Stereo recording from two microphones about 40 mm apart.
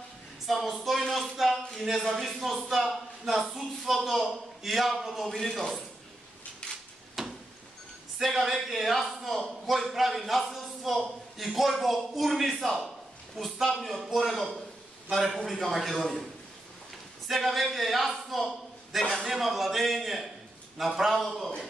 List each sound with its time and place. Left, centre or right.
0.5 s speech: centre
1.3 s speech: centre
1.8 s a man's voice: centre
6.6 s drawer open or close: left
7.2 s a sound: centre
8.2 s a man's voice: centre
17.3 s a man's voice: centre